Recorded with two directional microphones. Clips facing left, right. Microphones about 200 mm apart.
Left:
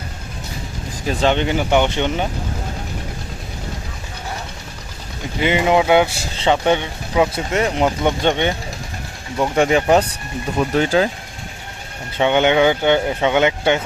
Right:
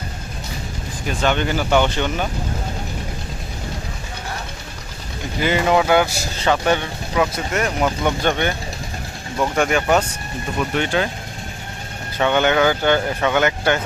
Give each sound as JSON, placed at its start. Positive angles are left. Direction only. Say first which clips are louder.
{"t": 1.2, "sound": "speech", "louder": "left 2 dB", "side_deg": 25}
{"t": 5.4, "sound": "speech", "louder": "left 1 dB", "side_deg": 15}
{"t": 12.1, "sound": "speech", "louder": "left 2 dB", "side_deg": 20}